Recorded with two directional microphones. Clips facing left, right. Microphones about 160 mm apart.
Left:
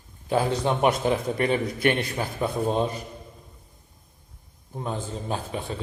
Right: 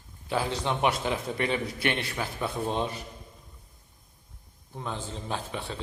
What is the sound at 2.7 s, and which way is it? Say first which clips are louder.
Speech: left 5 dB; 40° left (ahead or behind).